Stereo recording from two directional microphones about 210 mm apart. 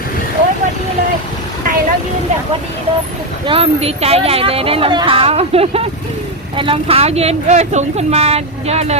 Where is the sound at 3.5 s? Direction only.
25° right (ahead or behind).